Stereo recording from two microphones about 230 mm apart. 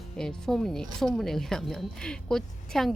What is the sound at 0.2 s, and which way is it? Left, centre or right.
Speech, centre.